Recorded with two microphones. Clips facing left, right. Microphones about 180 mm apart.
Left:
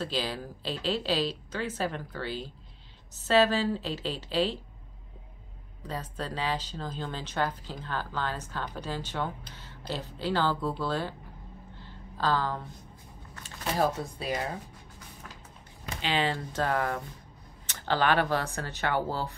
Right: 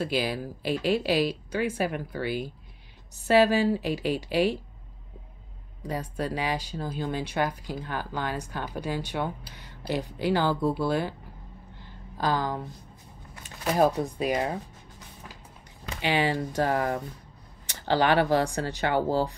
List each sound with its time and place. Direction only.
0.0 s speech: 10° right (ahead or behind)
5.8 s speech: 10° right (ahead or behind)
11.8 s a sound: 15° right (ahead or behind)
13.3 s speech: 15° right (ahead or behind)
16.0 s speech: 15° right (ahead or behind)